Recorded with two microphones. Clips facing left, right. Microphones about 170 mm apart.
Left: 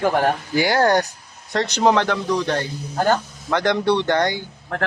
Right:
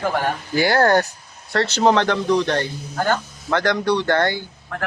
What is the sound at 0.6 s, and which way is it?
A man's voice, 10° left (ahead or behind).